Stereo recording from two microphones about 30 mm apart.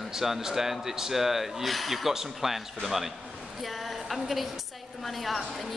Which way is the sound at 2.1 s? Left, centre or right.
Centre.